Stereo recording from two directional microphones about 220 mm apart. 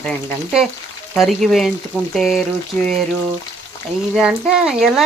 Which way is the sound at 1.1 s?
Centre (ahead or behind).